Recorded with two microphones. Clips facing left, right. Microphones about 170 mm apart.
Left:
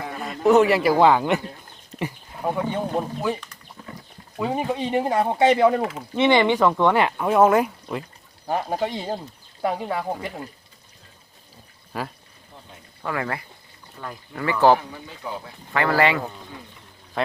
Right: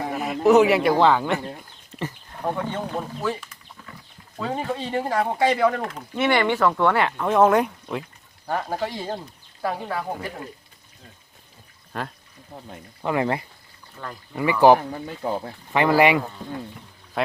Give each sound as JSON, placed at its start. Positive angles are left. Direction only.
{"t": 0.2, "sound": "speech", "side_deg": -5}
{"t": 3.8, "sound": "a sound", "side_deg": 35}
{"t": 4.4, "sound": "speech", "side_deg": 15}
{"t": 5.8, "sound": "speech", "side_deg": 5}
{"t": 6.1, "sound": "speech", "side_deg": 20}
{"t": 8.4, "sound": "speech", "side_deg": 20}
{"t": 11.9, "sound": "speech", "side_deg": 5}
{"t": 13.0, "sound": "speech", "side_deg": -20}
{"t": 14.0, "sound": "speech", "side_deg": 5}
{"t": 14.3, "sound": "speech", "side_deg": -15}
{"t": 14.8, "sound": "speech", "side_deg": -45}
{"t": 15.7, "sound": "speech", "side_deg": -15}
{"t": 17.2, "sound": "speech", "side_deg": -5}